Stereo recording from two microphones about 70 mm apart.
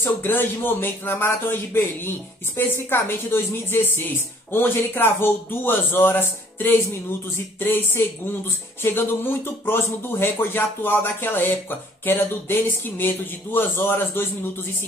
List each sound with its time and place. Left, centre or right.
0.0 s speech: left